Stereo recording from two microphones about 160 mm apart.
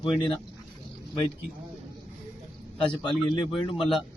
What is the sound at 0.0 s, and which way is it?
Speech, 30° left (ahead or behind).